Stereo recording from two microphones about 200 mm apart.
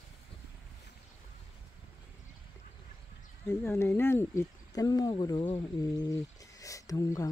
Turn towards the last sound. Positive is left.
turn(degrees=15)  # may be behind; listen again after turning